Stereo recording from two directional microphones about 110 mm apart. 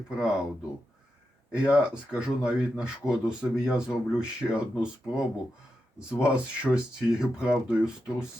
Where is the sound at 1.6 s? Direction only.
5° right (ahead or behind).